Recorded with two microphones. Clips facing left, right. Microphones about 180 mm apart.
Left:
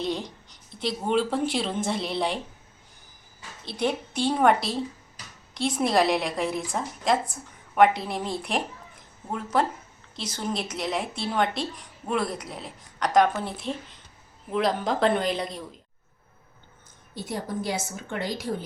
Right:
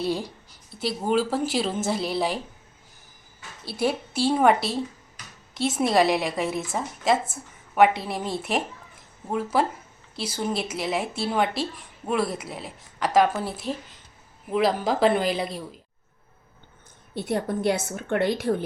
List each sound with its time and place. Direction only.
0.0 s speech: 10° right (ahead or behind)
3.7 s speech: 5° right (ahead or behind)
17.2 s a woman's voice: 65° right (ahead or behind)